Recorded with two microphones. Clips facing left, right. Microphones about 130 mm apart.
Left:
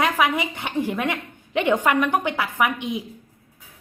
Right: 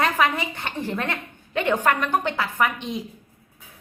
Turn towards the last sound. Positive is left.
turn(degrees=10)  # may be behind; listen again after turning